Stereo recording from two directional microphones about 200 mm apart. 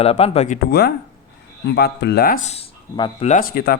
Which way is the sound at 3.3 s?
45° left (ahead or behind).